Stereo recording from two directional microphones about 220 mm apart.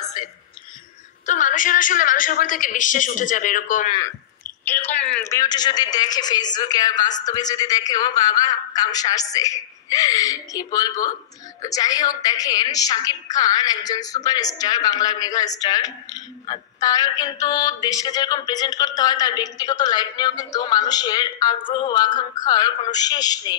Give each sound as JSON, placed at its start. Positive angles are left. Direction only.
{"t": 1.2, "sound": "a woman's voice", "side_deg": 35}
{"t": 4.6, "sound": "a woman's voice", "side_deg": 10}